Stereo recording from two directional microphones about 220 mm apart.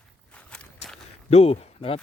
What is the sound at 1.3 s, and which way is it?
Speech, 25° left (ahead or behind).